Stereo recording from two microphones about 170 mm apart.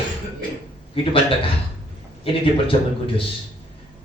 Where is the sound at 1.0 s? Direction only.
30° left (ahead or behind).